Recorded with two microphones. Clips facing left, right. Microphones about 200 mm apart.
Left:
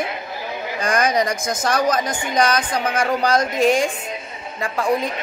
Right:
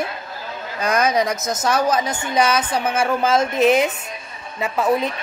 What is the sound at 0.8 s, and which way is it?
A man's voice, 5° right (ahead or behind).